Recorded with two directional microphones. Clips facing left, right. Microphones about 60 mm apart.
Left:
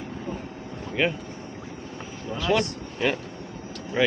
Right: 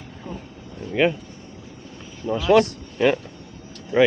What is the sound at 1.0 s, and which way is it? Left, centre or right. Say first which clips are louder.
Speech: right 5 dB; centre.